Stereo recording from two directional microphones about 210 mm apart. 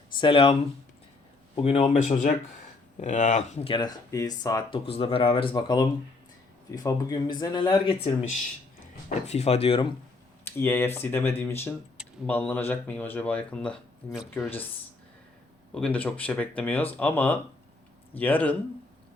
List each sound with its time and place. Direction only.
0.2 s speech: 25° left (ahead or behind)
1.5 s speech: 30° left (ahead or behind)
10.4 s speech: 10° left (ahead or behind)
15.7 s speech: 5° left (ahead or behind)